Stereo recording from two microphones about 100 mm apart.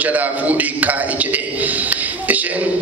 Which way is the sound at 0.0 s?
15° right (ahead or behind).